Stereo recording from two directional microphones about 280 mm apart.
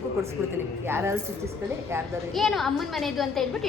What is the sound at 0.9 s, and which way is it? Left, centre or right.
A woman's voice, centre.